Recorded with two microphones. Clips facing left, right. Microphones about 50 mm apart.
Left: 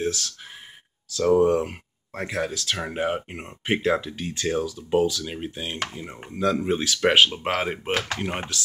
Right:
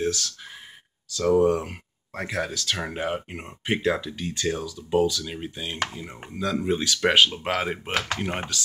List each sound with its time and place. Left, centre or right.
1.1 s speech: left
2.1 s speech: centre; by 5.2 s left
5.2 s speech: centre
6.6 s speech: centre